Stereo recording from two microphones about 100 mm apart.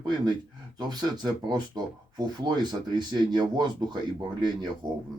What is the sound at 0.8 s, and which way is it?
Speech, 45° right (ahead or behind).